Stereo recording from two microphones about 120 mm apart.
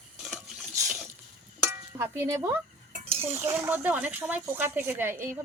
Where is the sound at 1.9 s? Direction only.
20° right (ahead or behind).